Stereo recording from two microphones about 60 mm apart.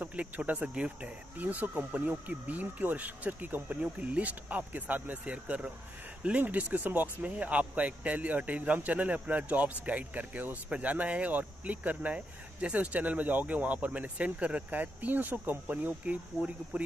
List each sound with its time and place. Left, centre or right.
0.0 s speech: right